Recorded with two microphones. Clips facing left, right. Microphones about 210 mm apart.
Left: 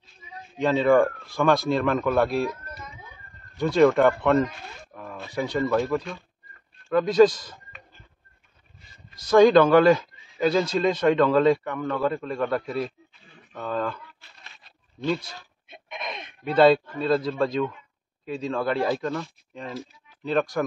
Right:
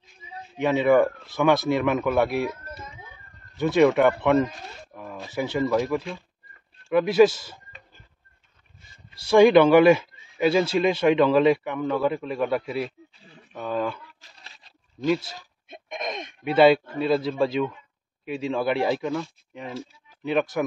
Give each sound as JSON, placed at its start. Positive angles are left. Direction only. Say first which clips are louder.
{"t": 0.6, "sound": "a man's voice", "louder": "even", "side_deg": -5}
{"t": 3.5, "sound": "a man's voice", "louder": "even", "side_deg": -5}
{"t": 9.3, "sound": "a man's voice", "louder": "right 1 dB", "side_deg": -10}
{"t": 15.0, "sound": "a man's voice", "louder": "right 3 dB", "side_deg": -5}
{"t": 15.7, "sound": "a sound", "louder": "right 4 dB", "side_deg": -45}
{"t": 16.4, "sound": "a man's voice", "louder": "right 1 dB", "side_deg": -5}